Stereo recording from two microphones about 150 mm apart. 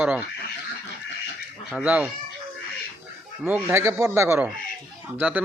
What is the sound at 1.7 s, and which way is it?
Speech, 10° right (ahead or behind).